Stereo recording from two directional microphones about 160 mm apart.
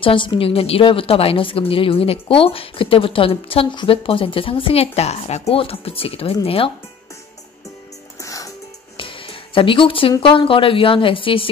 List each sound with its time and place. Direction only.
0.0 s a woman's voice: 30° left (ahead or behind)
8.2 s music: 20° left (ahead or behind)
8.9 s a sound: 35° left (ahead or behind)
10.2 s a woman's voice: 35° left (ahead or behind)